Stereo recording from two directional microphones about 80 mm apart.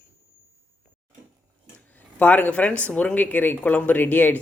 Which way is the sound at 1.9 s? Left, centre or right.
Centre.